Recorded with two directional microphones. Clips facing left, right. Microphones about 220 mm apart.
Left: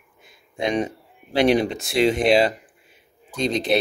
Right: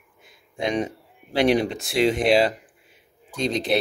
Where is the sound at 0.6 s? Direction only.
20° left (ahead or behind).